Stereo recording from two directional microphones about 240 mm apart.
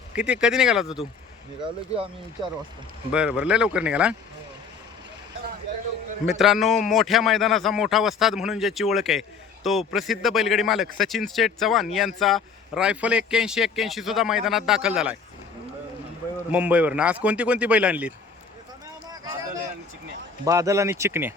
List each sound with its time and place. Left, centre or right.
0.1 s speech: centre
3.1 s speech: centre
5.7 s a sound: right
6.2 s speech: centre
16.5 s speech: centre
20.4 s speech: centre